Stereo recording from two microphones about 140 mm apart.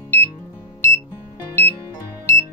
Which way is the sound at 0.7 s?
20° left (ahead or behind).